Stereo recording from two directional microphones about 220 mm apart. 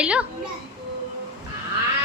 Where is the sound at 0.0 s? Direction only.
5° right (ahead or behind).